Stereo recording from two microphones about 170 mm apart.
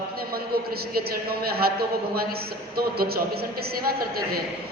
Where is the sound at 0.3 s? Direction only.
65° right (ahead or behind).